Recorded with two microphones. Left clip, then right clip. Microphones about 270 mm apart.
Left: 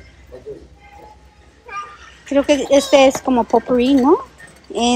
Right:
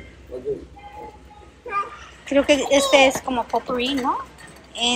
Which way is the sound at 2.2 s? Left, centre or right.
Centre.